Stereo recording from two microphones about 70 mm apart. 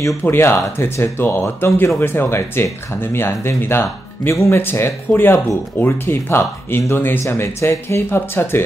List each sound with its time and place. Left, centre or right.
0.2 s speech: left